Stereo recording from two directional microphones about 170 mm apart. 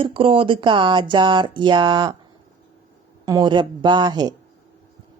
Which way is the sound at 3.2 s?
20° right (ahead or behind).